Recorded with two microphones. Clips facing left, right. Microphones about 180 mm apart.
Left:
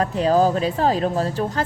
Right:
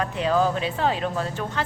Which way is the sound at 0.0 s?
40° left (ahead or behind).